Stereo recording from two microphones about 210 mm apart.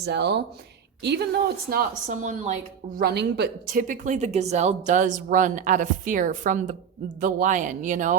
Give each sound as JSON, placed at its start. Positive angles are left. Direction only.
{"t": 0.0, "sound": "a woman's voice", "side_deg": -55}
{"t": 2.0, "sound": "a woman's voice", "side_deg": -35}
{"t": 3.0, "sound": "a woman's voice", "side_deg": -50}